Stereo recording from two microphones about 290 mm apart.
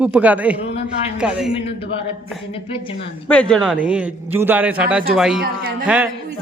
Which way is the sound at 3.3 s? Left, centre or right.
Centre.